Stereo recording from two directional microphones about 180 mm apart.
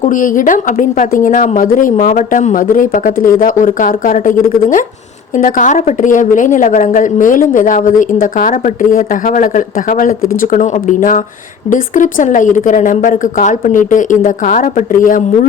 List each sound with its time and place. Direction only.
0.0 s a woman's voice: 45° left (ahead or behind)